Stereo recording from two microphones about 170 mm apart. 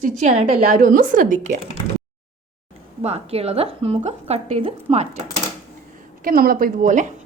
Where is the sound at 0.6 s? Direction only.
55° right (ahead or behind).